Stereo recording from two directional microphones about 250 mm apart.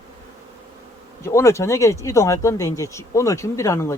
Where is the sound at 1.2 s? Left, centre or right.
Centre.